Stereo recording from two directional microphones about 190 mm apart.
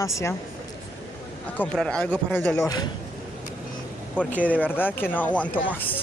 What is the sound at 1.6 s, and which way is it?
Speech, 5° left (ahead or behind).